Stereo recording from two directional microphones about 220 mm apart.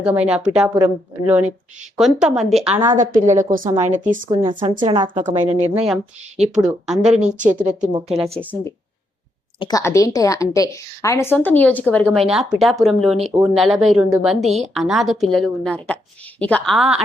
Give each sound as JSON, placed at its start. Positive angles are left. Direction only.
{"t": 0.0, "sound": "a woman's voice", "side_deg": -5}
{"t": 2.0, "sound": "a woman's voice", "side_deg": 0}
{"t": 2.9, "sound": "a woman's voice", "side_deg": -35}
{"t": 4.3, "sound": "speech", "side_deg": -20}
{"t": 5.7, "sound": "a woman's voice", "side_deg": 0}
{"t": 7.2, "sound": "a woman's voice", "side_deg": -35}
{"t": 7.6, "sound": "a woman's voice", "side_deg": -5}
{"t": 9.6, "sound": "a woman's voice", "side_deg": 15}